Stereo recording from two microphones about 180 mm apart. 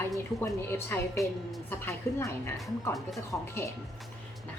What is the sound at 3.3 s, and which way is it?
Speech, 15° left (ahead or behind).